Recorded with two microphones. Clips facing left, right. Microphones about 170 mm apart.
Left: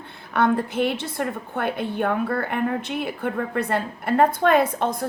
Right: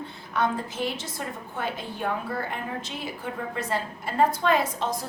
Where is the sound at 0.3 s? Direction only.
60° left (ahead or behind).